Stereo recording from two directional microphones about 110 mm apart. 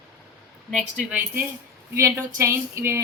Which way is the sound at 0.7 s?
15° right (ahead or behind).